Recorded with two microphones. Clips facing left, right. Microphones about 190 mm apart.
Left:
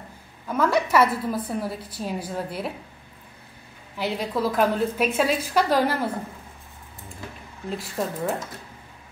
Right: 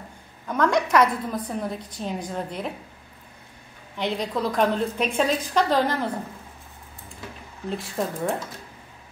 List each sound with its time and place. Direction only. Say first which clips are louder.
0.5 s a woman's voice: even; 5° left (ahead or behind)
3.9 s a woman's voice: even; 5° left (ahead or behind)
7.7 s a woman's voice: even; centre (ahead or behind)